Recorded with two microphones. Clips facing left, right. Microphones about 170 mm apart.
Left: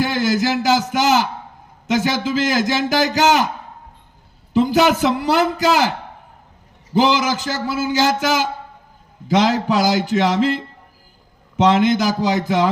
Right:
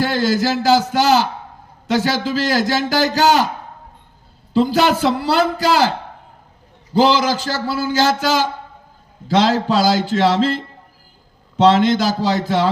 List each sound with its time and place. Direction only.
0.0 s a man's voice: 20° left (ahead or behind)
4.5 s a man's voice: 20° left (ahead or behind)
6.9 s a man's voice: 20° left (ahead or behind)